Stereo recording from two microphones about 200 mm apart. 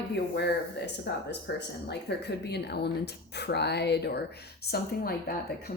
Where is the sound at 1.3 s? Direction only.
55° left (ahead or behind).